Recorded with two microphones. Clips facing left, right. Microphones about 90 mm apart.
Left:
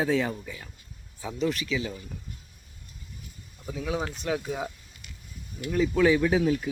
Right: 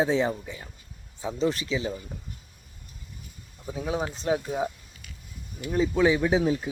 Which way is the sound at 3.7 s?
30° right (ahead or behind).